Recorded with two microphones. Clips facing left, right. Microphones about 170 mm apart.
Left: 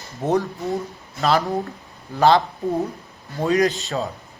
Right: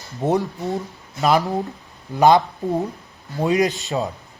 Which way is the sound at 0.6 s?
Centre (ahead or behind).